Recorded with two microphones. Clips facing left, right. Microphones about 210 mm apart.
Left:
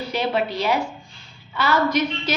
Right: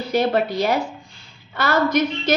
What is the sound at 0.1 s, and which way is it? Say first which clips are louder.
Speech: right 5 dB; 45° right (ahead or behind).